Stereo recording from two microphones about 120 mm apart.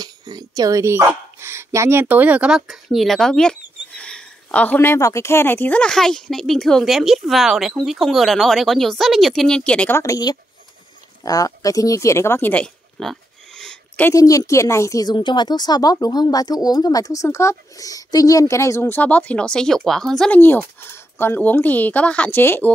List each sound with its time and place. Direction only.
0.0 s speech: 35° right (ahead or behind); by 9.9 s 10° left (ahead or behind)
9.9 s speech: 30° left (ahead or behind); by 14.0 s 5° left (ahead or behind)
14.1 s speech: 25° left (ahead or behind); by 20.2 s 5° left (ahead or behind)
20.2 s speech: 15° left (ahead or behind)